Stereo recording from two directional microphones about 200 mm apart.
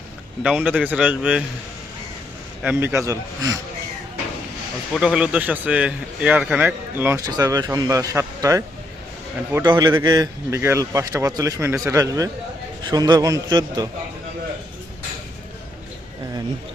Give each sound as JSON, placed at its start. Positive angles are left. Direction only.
{"t": 0.4, "sound": "a man's voice", "side_deg": -5}
{"t": 2.6, "sound": "a man's voice", "side_deg": -10}
{"t": 4.9, "sound": "a man's voice", "side_deg": -5}